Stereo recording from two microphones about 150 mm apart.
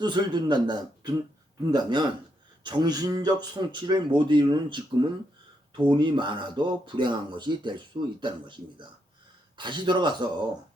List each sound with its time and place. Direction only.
0.0 s a man's voice: 30° right (ahead or behind)